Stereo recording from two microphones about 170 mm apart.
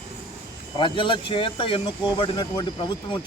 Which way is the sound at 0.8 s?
30° left (ahead or behind).